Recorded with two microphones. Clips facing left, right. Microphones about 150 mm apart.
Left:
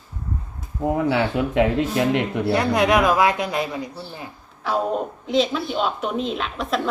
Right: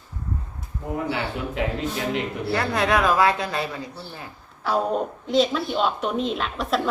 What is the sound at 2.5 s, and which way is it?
Speech, 15° left (ahead or behind).